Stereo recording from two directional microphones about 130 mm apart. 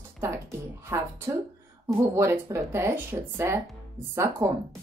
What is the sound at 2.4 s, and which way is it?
Speech, 20° right (ahead or behind).